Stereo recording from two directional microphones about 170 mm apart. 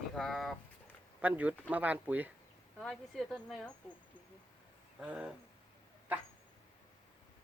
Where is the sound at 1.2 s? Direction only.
10° right (ahead or behind).